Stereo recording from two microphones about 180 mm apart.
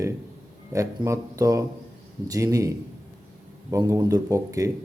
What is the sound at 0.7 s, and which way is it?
Speech, 15° right (ahead or behind).